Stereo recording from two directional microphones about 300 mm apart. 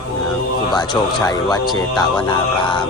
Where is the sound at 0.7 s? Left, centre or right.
Centre.